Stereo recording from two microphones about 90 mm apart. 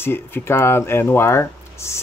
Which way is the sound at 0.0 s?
25° left (ahead or behind).